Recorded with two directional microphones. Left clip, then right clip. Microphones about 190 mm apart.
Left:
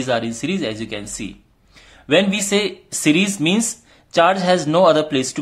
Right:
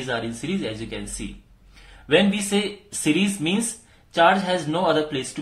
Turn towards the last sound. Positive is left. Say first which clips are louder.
# left 6 dB
turn(degrees=55)  # may be behind; listen again after turning